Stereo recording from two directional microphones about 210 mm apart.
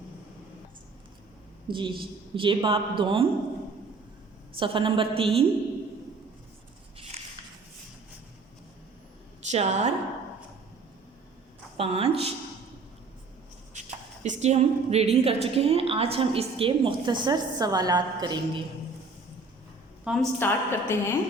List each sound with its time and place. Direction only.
1.6 s a woman's voice: 25° right (ahead or behind)
4.5 s a woman's voice: 25° right (ahead or behind)
9.5 s a woman's voice: 35° right (ahead or behind)
11.8 s a woman's voice: 25° right (ahead or behind)
14.3 s a woman's voice: 35° right (ahead or behind)
20.1 s a woman's voice: centre (ahead or behind)